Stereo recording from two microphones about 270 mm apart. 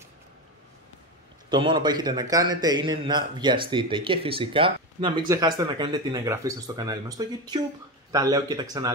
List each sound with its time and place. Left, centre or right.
1.5 s a man's voice: centre